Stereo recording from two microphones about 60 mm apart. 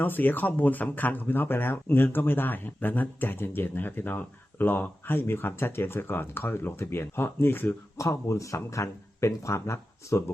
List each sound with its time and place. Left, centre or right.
0.0 s speech: left
7.9 s speech: left